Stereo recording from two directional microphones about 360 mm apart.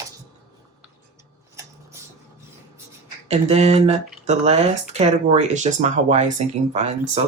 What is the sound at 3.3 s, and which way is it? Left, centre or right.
Speech, centre.